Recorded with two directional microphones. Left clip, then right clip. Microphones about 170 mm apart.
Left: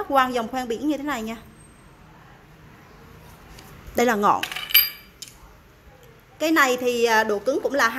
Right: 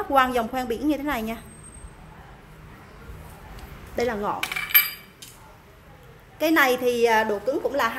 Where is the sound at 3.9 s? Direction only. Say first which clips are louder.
Left 7 dB; 45° left (ahead or behind).